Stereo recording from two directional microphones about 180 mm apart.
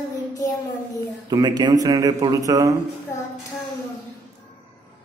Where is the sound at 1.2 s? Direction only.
25° right (ahead or behind).